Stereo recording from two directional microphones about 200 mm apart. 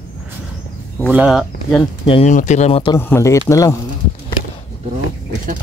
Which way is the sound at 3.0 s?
10° left (ahead or behind).